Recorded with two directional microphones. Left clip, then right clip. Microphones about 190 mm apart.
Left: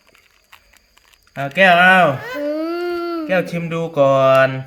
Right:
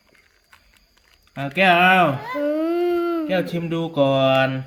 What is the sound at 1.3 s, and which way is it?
Speech, 30° left (ahead or behind).